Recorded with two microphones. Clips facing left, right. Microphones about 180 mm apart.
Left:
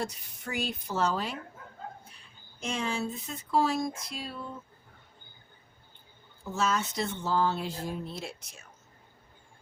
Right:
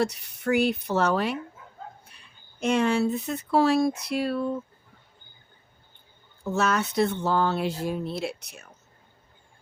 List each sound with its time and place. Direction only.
0.0 s speech: 70° right (ahead or behind)
2.6 s speech: 65° right (ahead or behind)
6.4 s speech: 70° right (ahead or behind)